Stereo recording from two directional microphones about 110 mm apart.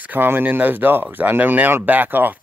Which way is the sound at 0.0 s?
15° right (ahead or behind).